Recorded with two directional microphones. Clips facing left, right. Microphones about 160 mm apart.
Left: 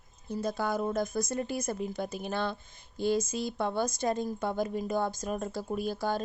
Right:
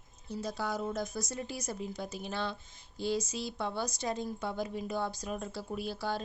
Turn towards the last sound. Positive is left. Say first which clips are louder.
# left 4 dB
turn(degrees=45)  # may be behind; listen again after turning